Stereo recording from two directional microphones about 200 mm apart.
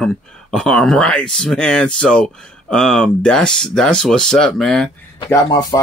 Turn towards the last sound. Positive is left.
turn(degrees=20)  # may be behind; listen again after turning